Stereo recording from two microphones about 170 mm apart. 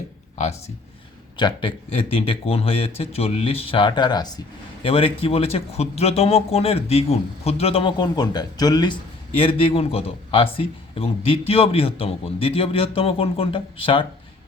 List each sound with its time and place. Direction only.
1.4 s speech: 30° left (ahead or behind)